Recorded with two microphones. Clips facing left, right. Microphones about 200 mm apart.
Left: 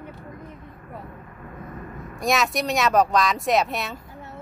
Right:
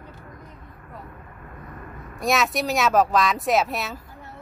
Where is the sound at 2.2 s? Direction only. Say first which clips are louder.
Even; centre (ahead or behind).